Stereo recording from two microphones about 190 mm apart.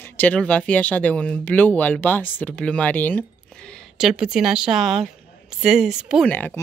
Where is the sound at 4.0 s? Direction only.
5° right (ahead or behind).